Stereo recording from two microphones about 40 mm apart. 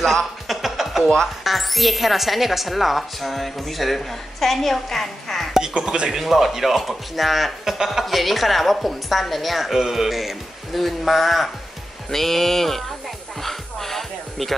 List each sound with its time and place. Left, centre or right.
0.0 s a sound: centre
0.5 s a sound: centre
1.4 s speech: centre
5.6 s speech: centre
6.1 s speech: centre
13.4 s music: centre